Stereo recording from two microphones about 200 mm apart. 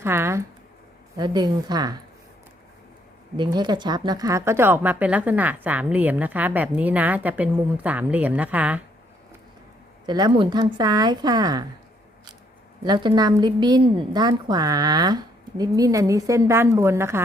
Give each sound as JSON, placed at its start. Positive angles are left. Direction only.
{"t": 0.0, "sound": "a woman's voice", "side_deg": -10}
{"t": 3.3, "sound": "a woman's voice", "side_deg": -20}
{"t": 10.1, "sound": "a woman's voice", "side_deg": -20}
{"t": 12.8, "sound": "a woman's voice", "side_deg": -20}